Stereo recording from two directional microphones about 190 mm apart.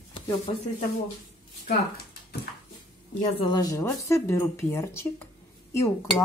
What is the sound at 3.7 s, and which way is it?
Speech, 15° left (ahead or behind).